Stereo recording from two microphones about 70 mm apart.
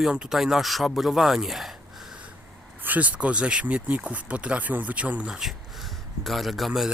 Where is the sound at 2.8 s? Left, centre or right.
Right.